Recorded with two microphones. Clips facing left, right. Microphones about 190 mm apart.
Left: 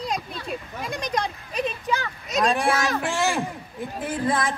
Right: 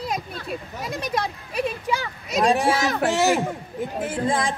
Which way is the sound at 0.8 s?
5° right (ahead or behind).